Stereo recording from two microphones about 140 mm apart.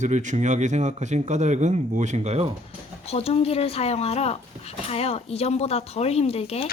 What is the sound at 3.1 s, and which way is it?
Speech, 45° left (ahead or behind).